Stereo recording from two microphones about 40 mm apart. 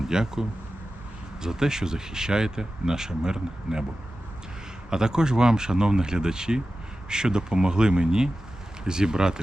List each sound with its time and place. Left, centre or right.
0.0 s speech: centre
4.9 s speech: centre